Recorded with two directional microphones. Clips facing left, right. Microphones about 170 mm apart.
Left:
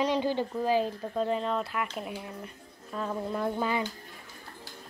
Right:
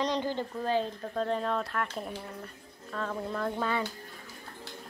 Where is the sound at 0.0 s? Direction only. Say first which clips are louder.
Left 3 dB; 10° left (ahead or behind).